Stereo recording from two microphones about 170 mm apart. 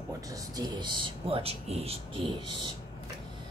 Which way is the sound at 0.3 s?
25° right (ahead or behind).